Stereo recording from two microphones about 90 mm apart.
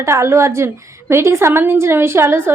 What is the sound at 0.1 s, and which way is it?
A woman's voice, 30° right (ahead or behind).